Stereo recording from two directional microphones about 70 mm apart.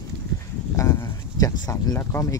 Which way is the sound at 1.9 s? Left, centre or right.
Left.